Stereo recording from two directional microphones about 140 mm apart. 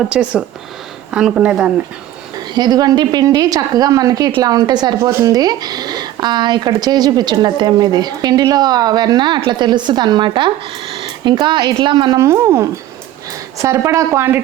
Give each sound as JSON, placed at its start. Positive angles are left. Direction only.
{"t": 0.1, "sound": "speech", "side_deg": -10}
{"t": 2.6, "sound": "a woman's voice", "side_deg": -30}